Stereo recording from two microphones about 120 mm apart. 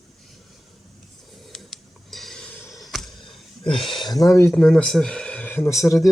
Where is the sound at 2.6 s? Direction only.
30° left (ahead or behind).